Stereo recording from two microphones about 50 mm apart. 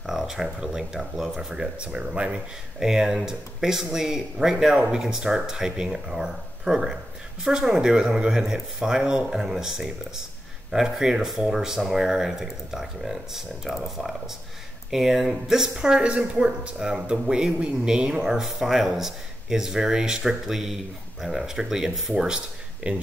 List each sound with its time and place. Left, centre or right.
0.0 s speech: centre; by 2.4 s right
2.8 s speech: centre
22.8 s speech: right